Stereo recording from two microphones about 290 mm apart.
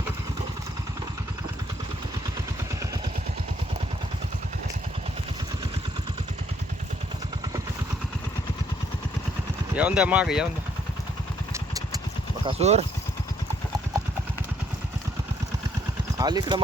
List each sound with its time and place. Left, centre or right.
9.7 s speech: centre
12.5 s speech: right
16.1 s speech: centre